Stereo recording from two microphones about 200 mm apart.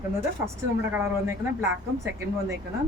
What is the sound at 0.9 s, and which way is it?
Speech, 10° right (ahead or behind).